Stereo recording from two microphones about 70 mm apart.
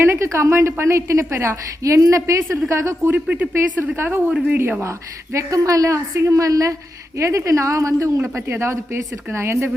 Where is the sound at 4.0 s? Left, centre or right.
Right.